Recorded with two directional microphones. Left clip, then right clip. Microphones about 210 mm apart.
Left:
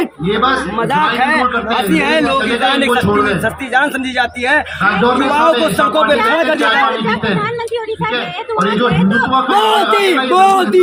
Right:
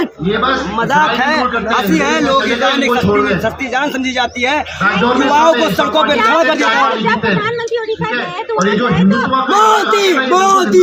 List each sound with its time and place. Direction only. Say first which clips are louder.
1.2 s a man's voice: left 1 dB; 10° right (ahead or behind)
2.5 s a man's voice: even; 50° left (ahead or behind)
3.4 s speech: left 2 dB; 5° right (ahead or behind)
4.8 s a man's voice: right 3 dB; 50° left (ahead or behind)
5.3 s a man's voice: right 1 dB; 10° right (ahead or behind)
9.5 s a man's voice: right 4 dB; 10° right (ahead or behind)